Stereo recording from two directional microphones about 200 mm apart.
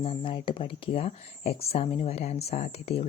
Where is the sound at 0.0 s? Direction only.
25° left (ahead or behind).